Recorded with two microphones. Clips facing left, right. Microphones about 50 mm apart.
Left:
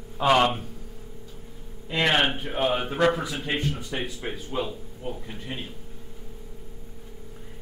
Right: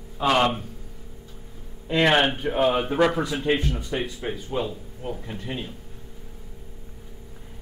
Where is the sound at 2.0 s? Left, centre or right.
Right.